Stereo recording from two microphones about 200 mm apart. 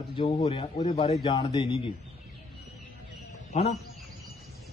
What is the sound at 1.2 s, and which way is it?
Speech, 20° left (ahead or behind).